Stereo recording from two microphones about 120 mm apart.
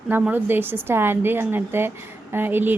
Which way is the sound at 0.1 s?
15° right (ahead or behind).